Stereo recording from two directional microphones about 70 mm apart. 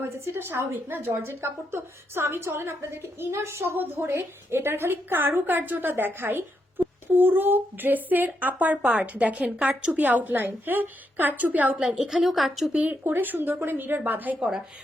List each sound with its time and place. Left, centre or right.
0.0 s a woman's voice: right
11.8 s a woman's voice: centre
12.7 s speech: centre
13.1 s a woman's voice: right